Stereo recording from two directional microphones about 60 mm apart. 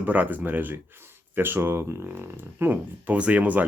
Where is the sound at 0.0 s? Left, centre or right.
Right.